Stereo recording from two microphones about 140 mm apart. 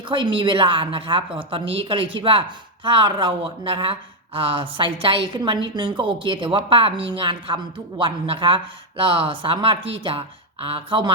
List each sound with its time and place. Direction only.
0.1 s speech: 35° right (ahead or behind)